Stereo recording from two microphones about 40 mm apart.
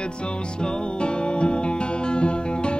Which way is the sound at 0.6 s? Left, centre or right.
Left.